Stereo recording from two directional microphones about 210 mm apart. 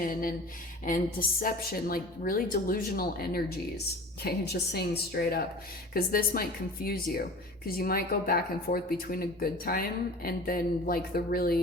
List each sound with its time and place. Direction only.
0.0 s a woman's voice: 40° left (ahead or behind)